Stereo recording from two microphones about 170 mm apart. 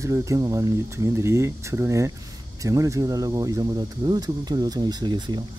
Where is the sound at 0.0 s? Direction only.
20° right (ahead or behind).